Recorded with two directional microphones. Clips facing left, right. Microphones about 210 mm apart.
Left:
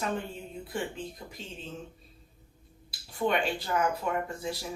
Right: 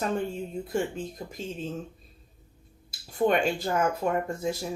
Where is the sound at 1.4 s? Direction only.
45° right (ahead or behind).